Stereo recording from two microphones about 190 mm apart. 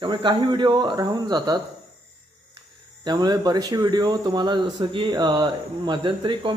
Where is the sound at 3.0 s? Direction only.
20° right (ahead or behind).